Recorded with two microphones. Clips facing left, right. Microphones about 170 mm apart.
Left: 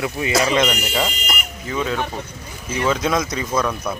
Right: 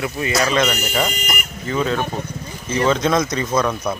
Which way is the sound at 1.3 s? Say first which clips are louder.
Right 2 dB; 5° left (ahead or behind).